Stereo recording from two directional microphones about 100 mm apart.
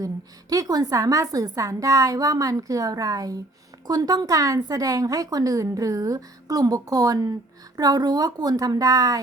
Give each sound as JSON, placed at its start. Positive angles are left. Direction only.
{"t": 0.5, "sound": "a woman's voice", "side_deg": -35}